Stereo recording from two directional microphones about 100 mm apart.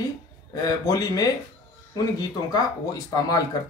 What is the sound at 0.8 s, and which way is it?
Speech, 35° left (ahead or behind).